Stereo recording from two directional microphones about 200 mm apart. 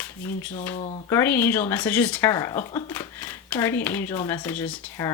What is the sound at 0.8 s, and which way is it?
Speech, 30° left (ahead or behind).